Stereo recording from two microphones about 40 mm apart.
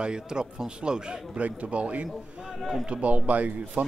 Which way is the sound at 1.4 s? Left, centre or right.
Right.